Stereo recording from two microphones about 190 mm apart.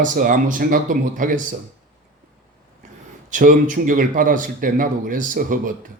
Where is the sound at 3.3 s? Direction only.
45° right (ahead or behind).